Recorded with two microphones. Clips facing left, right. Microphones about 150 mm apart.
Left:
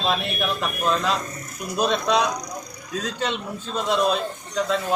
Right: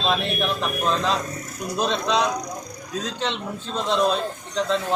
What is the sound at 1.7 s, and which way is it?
Speech, 15° left (ahead or behind).